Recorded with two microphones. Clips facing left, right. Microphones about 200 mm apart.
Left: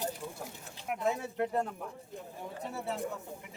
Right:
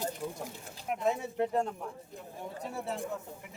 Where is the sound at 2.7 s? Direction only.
Centre (ahead or behind).